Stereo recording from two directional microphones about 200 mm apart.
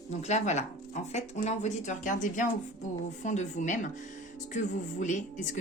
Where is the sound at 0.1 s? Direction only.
35° left (ahead or behind).